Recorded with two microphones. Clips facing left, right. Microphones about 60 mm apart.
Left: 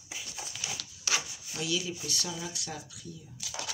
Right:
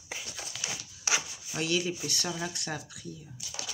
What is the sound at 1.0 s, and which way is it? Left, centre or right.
Rub, centre.